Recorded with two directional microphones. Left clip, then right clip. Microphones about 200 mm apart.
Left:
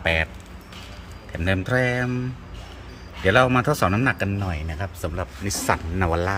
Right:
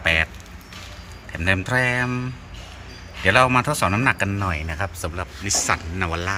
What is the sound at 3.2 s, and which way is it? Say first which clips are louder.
A man's voice: right 1 dB; 10° left (ahead or behind).